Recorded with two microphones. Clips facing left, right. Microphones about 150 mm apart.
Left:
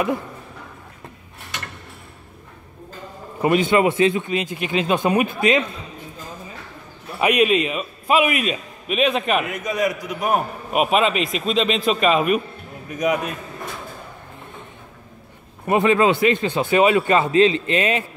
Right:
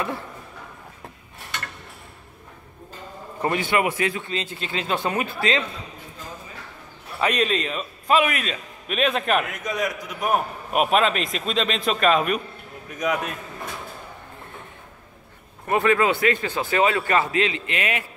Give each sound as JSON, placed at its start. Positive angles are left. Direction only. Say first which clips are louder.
{"t": 3.4, "sound": "speech", "louder": "left 6 dB", "side_deg": 20}
{"t": 7.2, "sound": "a man's voice", "louder": "left 5 dB", "side_deg": 10}
{"t": 15.6, "sound": "a man's voice", "louder": "left 3 dB", "side_deg": 20}